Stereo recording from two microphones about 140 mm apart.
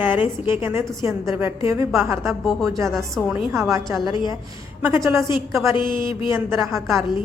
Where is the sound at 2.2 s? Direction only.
Centre (ahead or behind).